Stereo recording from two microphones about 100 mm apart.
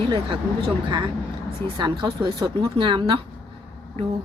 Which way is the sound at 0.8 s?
55° right (ahead or behind).